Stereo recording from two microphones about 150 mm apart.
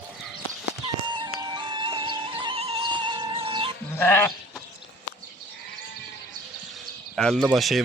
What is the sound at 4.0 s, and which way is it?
Speech, 15° left (ahead or behind).